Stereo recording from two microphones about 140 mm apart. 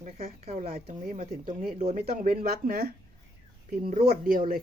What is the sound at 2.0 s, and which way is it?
Speech, 90° right.